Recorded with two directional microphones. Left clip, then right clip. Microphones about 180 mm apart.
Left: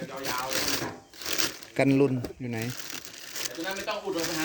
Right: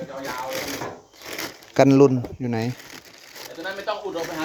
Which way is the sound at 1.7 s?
30° right (ahead or behind).